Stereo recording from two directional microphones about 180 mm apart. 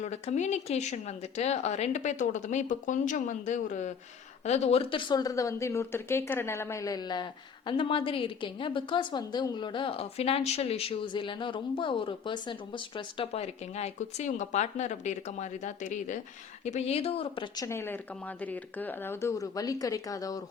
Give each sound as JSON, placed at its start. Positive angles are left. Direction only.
{"t": 0.0, "sound": "a woman's voice", "side_deg": 40}
{"t": 17.7, "sound": "speech", "side_deg": 15}